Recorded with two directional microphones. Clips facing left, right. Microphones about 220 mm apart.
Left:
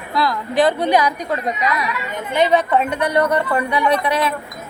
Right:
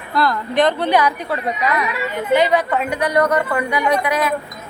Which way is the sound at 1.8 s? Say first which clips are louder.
Right 3 dB; 20° left (ahead or behind).